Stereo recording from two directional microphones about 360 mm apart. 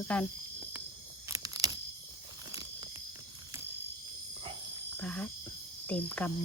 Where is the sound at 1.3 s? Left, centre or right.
Centre.